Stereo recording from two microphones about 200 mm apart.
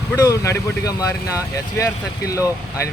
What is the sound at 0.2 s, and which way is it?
Speech, 15° left (ahead or behind).